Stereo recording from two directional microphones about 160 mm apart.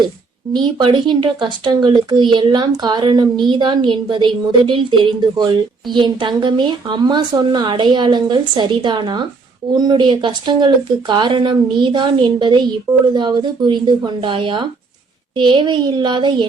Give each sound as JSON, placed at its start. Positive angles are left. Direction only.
{"t": 0.5, "sound": "a woman's voice", "side_deg": -30}